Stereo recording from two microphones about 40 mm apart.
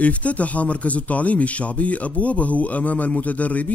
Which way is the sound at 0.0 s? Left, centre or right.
Left.